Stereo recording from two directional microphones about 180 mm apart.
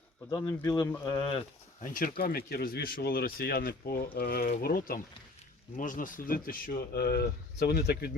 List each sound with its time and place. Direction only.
0.3 s speech: 20° left (ahead or behind)
1.8 s speech: 50° left (ahead or behind)